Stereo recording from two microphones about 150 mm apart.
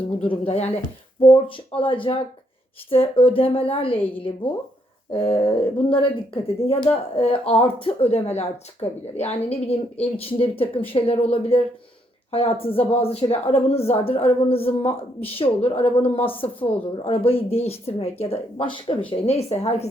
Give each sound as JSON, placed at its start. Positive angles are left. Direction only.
{"t": 0.2, "sound": "speech", "side_deg": 40}